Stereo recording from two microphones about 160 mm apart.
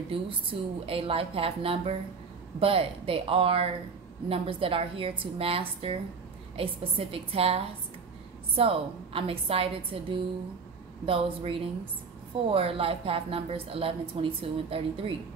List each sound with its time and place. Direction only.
0.1 s a woman's voice: 35° right (ahead or behind)